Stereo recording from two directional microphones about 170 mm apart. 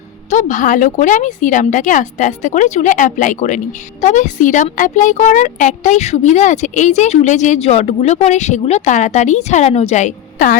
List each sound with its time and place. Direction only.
0.3 s a woman's voice: 45° left (ahead or behind)